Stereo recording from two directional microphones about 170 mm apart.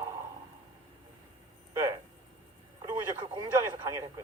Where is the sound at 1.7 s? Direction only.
20° right (ahead or behind).